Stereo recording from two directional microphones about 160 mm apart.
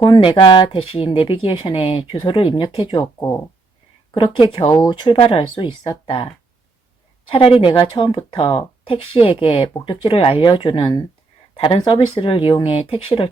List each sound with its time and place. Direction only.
0.0 s speech: 30° left (ahead or behind)
7.3 s speech: 35° left (ahead or behind)